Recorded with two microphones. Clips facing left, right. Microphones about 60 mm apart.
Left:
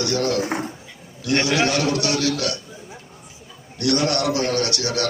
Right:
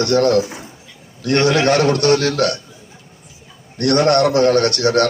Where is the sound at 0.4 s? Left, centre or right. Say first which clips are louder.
Left 7 dB; left.